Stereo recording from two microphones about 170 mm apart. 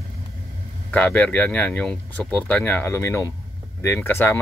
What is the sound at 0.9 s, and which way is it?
Speech, 10° left (ahead or behind).